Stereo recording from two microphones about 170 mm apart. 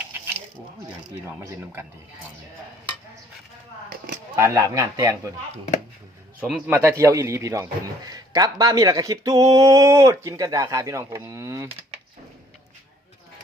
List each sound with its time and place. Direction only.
4.4 s speech: 15° right (ahead or behind)
6.4 s a man's voice: 10° right (ahead or behind)